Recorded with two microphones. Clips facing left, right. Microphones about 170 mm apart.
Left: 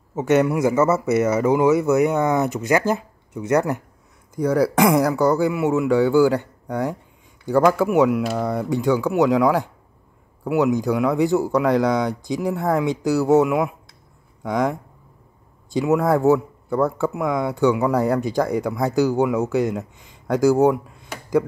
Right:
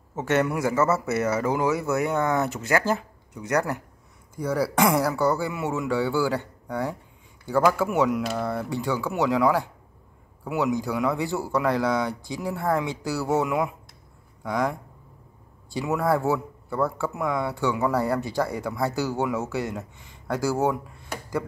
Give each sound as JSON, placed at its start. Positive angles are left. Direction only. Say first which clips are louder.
{"t": 0.1, "sound": "a man's voice", "louder": "left 6 dB", "side_deg": 15}